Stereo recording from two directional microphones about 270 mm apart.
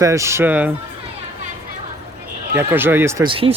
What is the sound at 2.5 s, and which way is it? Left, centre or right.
Speech, centre.